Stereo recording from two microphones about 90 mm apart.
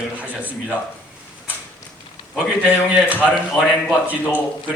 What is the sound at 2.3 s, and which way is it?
A man's voice, 15° right (ahead or behind).